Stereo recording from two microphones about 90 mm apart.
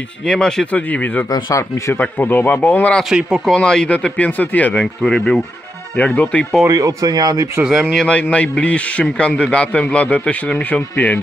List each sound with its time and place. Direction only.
0.2 s a man's voice: 5° left (ahead or behind)
1.3 s speech: 35° left (ahead or behind)
2.0 s a man's voice: 20° left (ahead or behind)
3.0 s speech: 5° right (ahead or behind)
3.4 s a man's voice: 10° left (ahead or behind)
6.7 s speech: 40° right (ahead or behind)
7.6 s a man's voice: centre (ahead or behind); by 11.1 s 15° left (ahead or behind)